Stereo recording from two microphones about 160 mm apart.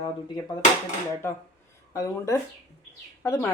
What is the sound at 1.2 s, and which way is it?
A woman's voice, 15° left (ahead or behind).